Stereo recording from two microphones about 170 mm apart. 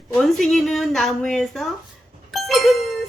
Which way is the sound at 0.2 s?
Centre (ahead or behind).